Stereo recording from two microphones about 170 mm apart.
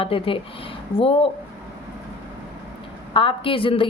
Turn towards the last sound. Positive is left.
turn(degrees=30)  # may be behind; listen again after turning